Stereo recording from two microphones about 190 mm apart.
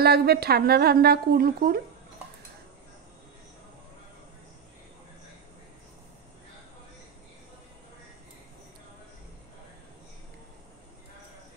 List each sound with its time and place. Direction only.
0.0 s speech: 55° right (ahead or behind)